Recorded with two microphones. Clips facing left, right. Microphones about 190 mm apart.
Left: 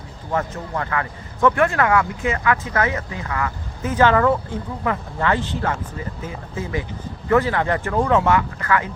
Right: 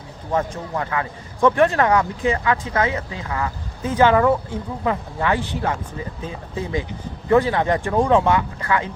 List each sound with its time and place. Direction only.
0.3 s a man's voice: 15° right (ahead or behind)
2.2 s speech: 30° right (ahead or behind)
2.5 s a man's voice: 20° right (ahead or behind)